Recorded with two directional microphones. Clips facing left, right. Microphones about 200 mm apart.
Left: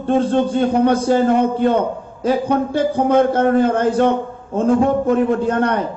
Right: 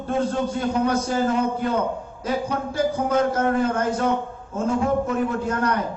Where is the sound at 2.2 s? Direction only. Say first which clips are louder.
Left 8 dB; 30° left (ahead or behind).